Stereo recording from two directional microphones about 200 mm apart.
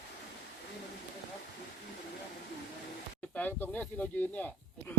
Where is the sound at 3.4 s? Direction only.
10° left (ahead or behind).